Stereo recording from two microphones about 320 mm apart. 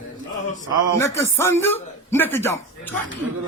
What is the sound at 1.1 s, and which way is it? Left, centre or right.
Speech, centre.